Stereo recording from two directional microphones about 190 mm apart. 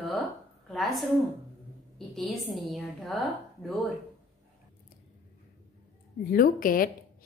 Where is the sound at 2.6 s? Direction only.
Centre (ahead or behind).